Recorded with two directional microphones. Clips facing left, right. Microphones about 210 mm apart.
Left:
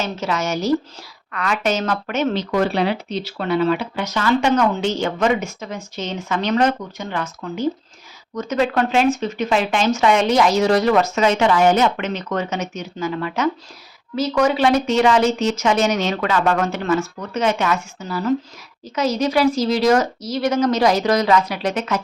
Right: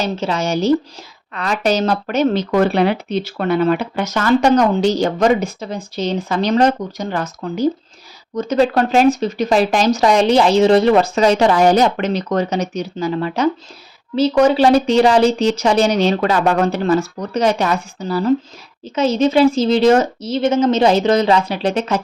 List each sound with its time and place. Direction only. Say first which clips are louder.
0.0 s a woman's voice: right 3 dB; 30° right (ahead or behind)